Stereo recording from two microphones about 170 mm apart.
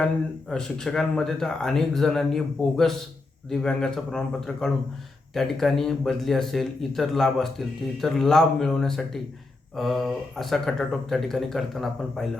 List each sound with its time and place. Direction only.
0.5 s speech: 5° left (ahead or behind)